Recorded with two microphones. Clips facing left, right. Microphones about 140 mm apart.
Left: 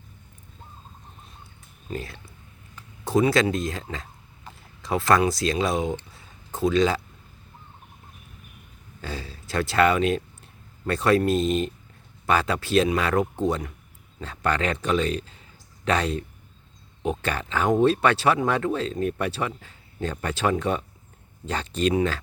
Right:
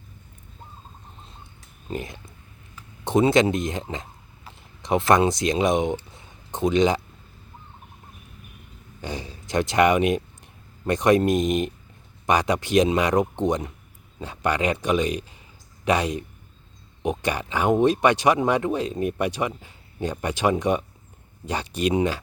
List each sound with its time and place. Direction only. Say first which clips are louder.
1.9 s speech: right 2 dB; 20° right (ahead or behind)
6.1 s a sound: right 1 dB; 20° right (ahead or behind)
9.0 s speech: right 2 dB; 20° right (ahead or behind)